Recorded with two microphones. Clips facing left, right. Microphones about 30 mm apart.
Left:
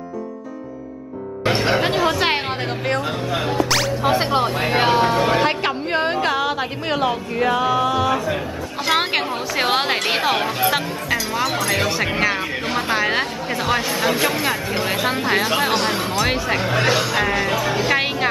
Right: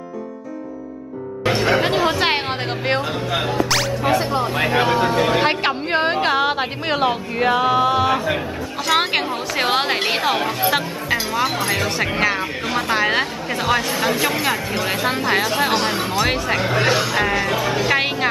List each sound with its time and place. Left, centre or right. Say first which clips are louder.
1.4 s music: right 1 dB; centre
1.8 s music: right 1 dB; centre
3.4 s music: left 2 dB; centre
4.2 s a sound: left 2 dB; left
4.6 s vehicle: even; left
5.1 s music: even; centre
5.4 s a woman's voice: right 1 dB; centre
8.9 s speech: right 1 dB; centre
11.8 s speech: even; centre
12.6 s speech: right 1 dB; centre
12.9 s speech: right 2 dB; centre